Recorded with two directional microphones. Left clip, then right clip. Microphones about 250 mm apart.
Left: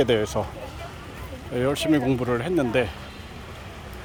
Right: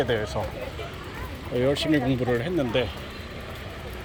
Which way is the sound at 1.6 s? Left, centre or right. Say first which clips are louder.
Left 1 dB; centre.